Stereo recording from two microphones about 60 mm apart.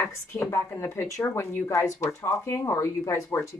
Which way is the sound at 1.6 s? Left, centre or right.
Left.